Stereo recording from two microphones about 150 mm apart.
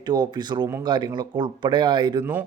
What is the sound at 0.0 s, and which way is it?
A man's voice, 30° right (ahead or behind).